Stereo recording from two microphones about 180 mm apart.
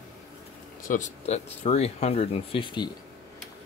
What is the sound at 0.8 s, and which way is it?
Speech, 45° left (ahead or behind).